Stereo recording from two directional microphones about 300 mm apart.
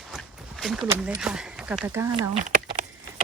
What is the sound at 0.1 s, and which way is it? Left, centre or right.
Speech, centre.